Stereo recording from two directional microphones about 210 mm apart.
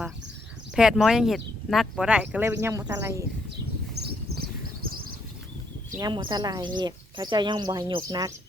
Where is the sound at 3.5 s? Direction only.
50° right (ahead or behind).